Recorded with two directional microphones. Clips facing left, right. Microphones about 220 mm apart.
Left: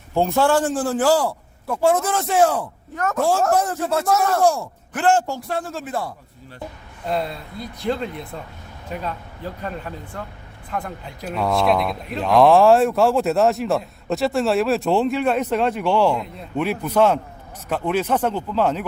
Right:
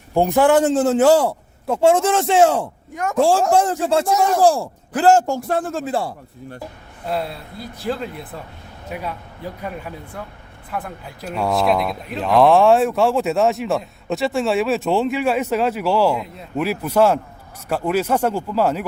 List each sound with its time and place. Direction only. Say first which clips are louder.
0.1 s a man's voice: right 3 dB; 15° right (ahead or behind)
2.9 s speech: left 1 dB; 15° right (ahead or behind)
3.2 s a man's voice: right 4 dB; 30° right (ahead or behind); by 5.8 s 50° right (ahead or behind)
5.9 s a man's voice: right 3 dB; 30° right (ahead or behind)
7.0 s speech: even; 5° right (ahead or behind)